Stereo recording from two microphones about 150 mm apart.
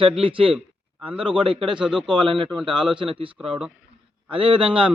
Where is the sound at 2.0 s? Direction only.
35° right (ahead or behind).